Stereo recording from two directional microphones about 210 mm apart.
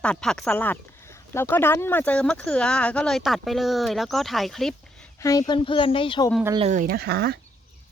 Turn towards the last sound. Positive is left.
turn(degrees=-50)  # may be behind; listen again after turning